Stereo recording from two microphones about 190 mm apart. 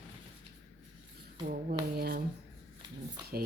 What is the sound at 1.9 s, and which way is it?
Speech, 55° right (ahead or behind).